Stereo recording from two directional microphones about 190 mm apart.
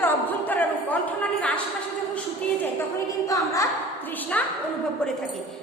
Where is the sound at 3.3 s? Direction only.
15° left (ahead or behind).